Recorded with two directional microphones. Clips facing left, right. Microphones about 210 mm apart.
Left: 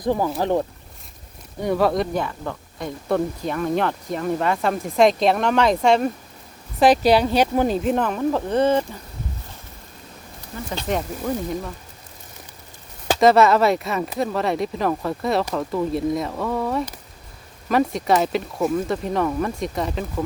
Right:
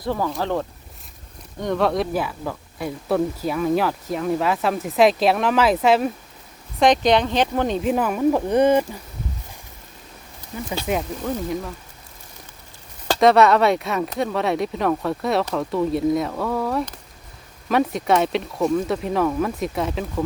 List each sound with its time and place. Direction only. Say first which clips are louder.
0.0 s speech: left 3 dB; 15° left (ahead or behind)
7.8 s speech: right 1 dB; 5° right (ahead or behind)
10.8 s speech: even; 5° right (ahead or behind)
13.1 s speech: even; centre (ahead or behind)